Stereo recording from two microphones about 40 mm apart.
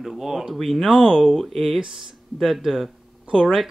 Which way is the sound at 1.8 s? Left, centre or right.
Centre.